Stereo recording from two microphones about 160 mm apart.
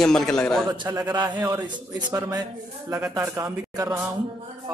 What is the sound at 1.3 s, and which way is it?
A man's voice, 25° right (ahead or behind).